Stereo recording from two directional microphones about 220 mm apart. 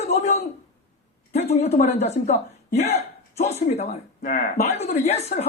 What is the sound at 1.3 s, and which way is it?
Speech, 30° left (ahead or behind).